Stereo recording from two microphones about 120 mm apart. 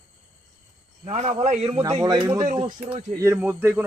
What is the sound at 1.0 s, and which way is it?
Speech, 65° right (ahead or behind).